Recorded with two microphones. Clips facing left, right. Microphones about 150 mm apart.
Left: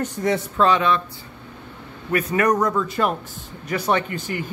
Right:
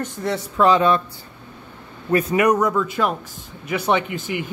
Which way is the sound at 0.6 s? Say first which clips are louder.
Right 3 dB; 10° right (ahead or behind).